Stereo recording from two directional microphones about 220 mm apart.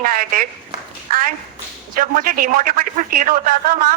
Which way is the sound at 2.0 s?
40° right (ahead or behind).